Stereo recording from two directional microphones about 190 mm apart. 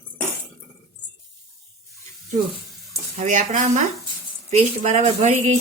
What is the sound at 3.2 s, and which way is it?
Speech, 40° right (ahead or behind).